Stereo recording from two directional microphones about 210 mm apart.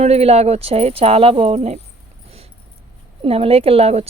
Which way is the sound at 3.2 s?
25° right (ahead or behind).